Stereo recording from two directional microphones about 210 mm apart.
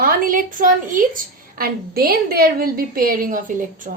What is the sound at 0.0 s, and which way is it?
A woman's voice, 45° right (ahead or behind).